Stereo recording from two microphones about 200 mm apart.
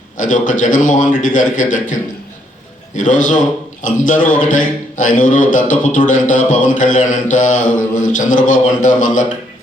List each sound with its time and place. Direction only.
0.2 s a man's voice: 40° left (ahead or behind)